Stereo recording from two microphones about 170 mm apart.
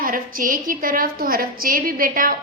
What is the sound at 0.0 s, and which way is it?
A woman's voice, 55° right (ahead or behind).